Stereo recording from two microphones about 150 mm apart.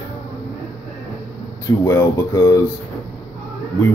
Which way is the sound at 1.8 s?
20° left (ahead or behind).